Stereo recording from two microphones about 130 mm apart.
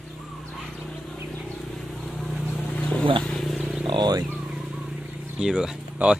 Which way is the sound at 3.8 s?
35° right (ahead or behind).